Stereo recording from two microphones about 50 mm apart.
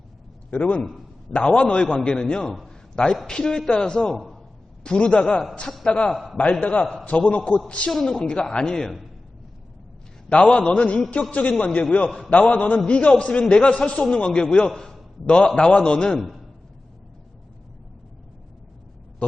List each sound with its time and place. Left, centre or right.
0.5 s a man's voice: left
2.6 s a sound: centre
3.2 s a woman's voice: centre; by 7.6 s left
7.9 s a woman's voice: centre
10.4 s a man's voice: left
13.1 s a man's voice: left